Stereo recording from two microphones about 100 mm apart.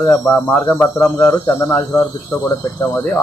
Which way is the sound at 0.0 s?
30° left (ahead or behind).